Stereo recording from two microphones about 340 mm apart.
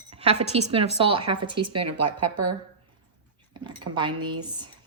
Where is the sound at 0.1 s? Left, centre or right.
Centre.